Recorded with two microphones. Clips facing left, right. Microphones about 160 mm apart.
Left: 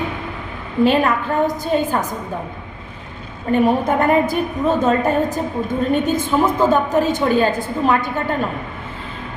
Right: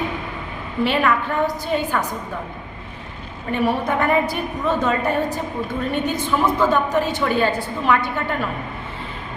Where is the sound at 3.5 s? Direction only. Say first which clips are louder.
Left 5 dB; 40° left (ahead or behind).